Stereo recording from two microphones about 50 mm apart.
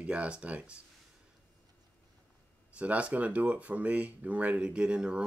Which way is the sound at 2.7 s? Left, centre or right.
Right.